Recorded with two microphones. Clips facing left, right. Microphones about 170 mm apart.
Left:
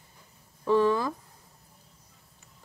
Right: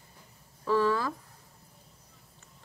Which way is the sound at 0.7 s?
20° left (ahead or behind).